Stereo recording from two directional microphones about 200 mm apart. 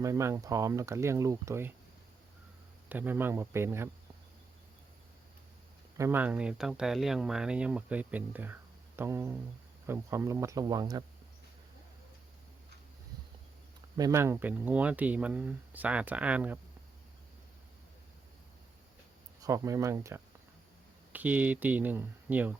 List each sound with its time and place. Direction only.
0.0 s speech: 15° right (ahead or behind)
2.9 s speech: 10° right (ahead or behind)
6.0 s speech: 10° right (ahead or behind)
13.9 s speech: 15° right (ahead or behind)
19.4 s speech: 15° right (ahead or behind)